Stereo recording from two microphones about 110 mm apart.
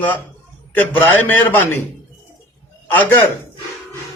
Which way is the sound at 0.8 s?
15° left (ahead or behind).